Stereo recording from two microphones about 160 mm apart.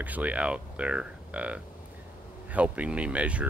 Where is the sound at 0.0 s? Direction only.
10° right (ahead or behind).